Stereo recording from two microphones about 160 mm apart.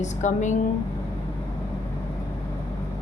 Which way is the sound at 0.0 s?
50° left (ahead or behind).